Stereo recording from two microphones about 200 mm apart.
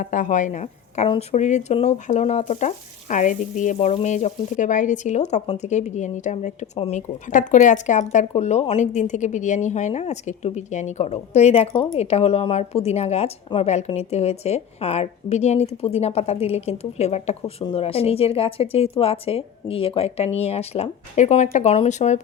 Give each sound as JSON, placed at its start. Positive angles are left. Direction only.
{"t": 0.0, "sound": "speech", "side_deg": 40}